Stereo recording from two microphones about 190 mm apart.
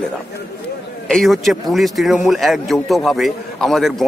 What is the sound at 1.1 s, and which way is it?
Speech, centre (ahead or behind).